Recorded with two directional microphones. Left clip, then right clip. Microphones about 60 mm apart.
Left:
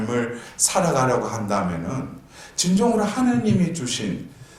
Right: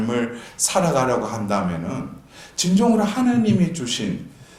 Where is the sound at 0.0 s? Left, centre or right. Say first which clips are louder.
Right 1 dB; right.